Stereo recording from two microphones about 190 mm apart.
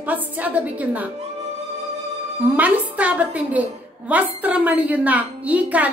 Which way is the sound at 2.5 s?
10° right (ahead or behind).